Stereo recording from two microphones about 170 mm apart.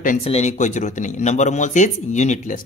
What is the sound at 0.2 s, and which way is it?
Speech, 40° left (ahead or behind).